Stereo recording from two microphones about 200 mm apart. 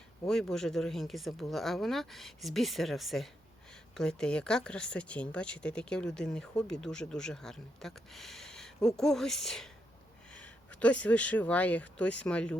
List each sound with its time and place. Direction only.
0.3 s speech: centre (ahead or behind)